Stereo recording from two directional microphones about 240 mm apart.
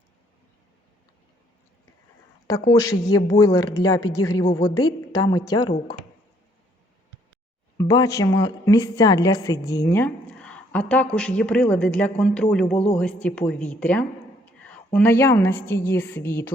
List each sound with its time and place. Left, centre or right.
2.5 s a woman's voice: centre
7.8 s a woman's voice: centre